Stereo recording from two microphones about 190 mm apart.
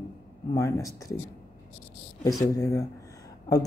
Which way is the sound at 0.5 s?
15° left (ahead or behind).